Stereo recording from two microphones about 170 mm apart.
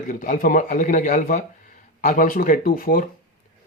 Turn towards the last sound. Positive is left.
turn(degrees=55)  # may be behind; listen again after turning